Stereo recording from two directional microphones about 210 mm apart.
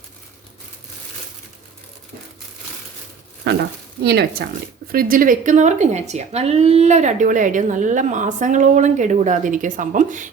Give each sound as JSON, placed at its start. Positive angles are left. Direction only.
{"t": 3.5, "sound": "speech", "side_deg": -55}